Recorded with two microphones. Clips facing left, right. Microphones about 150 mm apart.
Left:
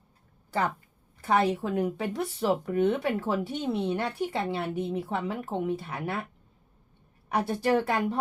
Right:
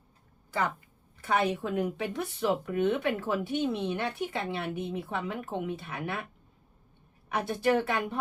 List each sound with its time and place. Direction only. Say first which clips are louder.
1.3 s speech: left 3 dB; 40° left (ahead or behind)
7.3 s speech: left 1 dB; 35° left (ahead or behind)